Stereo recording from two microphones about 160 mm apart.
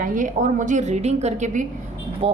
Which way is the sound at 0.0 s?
55° right (ahead or behind).